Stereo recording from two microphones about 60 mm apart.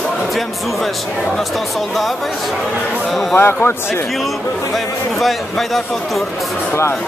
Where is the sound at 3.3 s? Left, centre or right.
Left.